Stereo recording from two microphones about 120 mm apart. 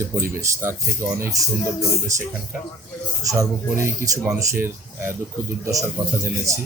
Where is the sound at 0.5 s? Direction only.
25° right (ahead or behind).